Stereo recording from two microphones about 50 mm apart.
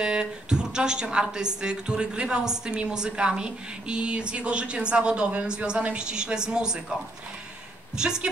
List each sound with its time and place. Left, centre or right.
0.0 s a woman's voice: centre
8.0 s a woman's voice: centre